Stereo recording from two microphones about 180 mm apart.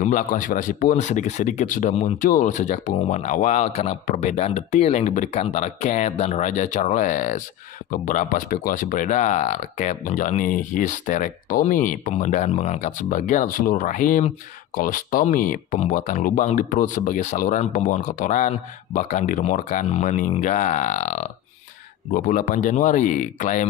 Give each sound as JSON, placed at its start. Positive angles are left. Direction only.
{"t": 0.0, "sound": "speech", "side_deg": 45}